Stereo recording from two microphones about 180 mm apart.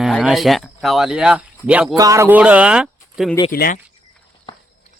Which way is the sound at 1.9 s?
20° right (ahead or behind).